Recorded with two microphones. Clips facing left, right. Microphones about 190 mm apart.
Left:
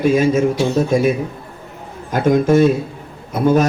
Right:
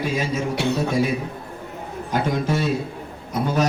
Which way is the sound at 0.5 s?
65° right (ahead or behind).